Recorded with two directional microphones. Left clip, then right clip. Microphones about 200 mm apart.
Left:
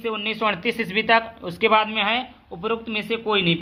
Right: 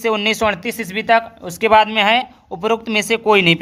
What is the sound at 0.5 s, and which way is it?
A woman's voice, 25° right (ahead or behind).